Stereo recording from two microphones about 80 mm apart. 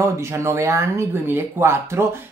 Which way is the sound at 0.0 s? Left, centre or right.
Right.